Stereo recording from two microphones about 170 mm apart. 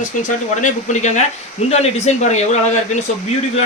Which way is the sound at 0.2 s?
50° left (ahead or behind).